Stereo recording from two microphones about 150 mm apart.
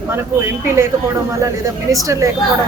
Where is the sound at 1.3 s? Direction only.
20° right (ahead or behind).